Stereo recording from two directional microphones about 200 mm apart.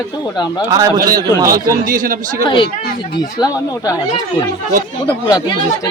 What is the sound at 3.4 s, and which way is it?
Speech, 15° left (ahead or behind).